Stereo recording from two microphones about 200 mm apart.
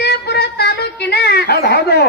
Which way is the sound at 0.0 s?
55° left (ahead or behind).